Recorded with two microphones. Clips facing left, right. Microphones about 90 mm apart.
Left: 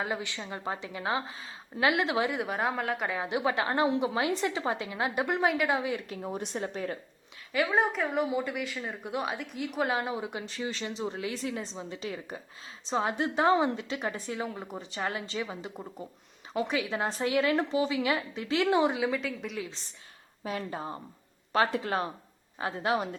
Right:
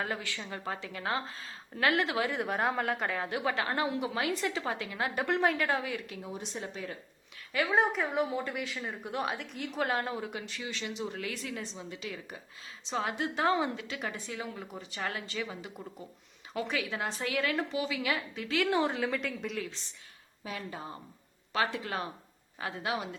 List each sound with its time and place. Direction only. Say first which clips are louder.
0.0 s a woman's voice: left 2 dB; 20° left (ahead or behind)
2.3 s a woman's voice: even; centre (ahead or behind)
3.1 s a woman's voice: left 3 dB; 20° left (ahead or behind)
6.1 s speech: left 5 dB; 50° left (ahead or behind)
7.5 s a woman's voice: left 1 dB; centre (ahead or behind)
10.1 s a woman's voice: left 2 dB; 20° left (ahead or behind)
10.4 s a woman's voice: left 4 dB; 35° left (ahead or behind)
18.9 s a woman's voice: left 2 dB; 5° left (ahead or behind)
20.4 s a woman's voice: left 5 dB; 40° left (ahead or behind)